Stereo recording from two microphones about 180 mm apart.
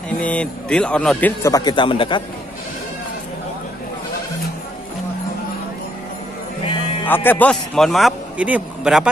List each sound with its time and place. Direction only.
0.2 s a man's voice: 5° left (ahead or behind)
1.4 s a man's voice: 20° left (ahead or behind)
7.1 s a man's voice: 10° left (ahead or behind)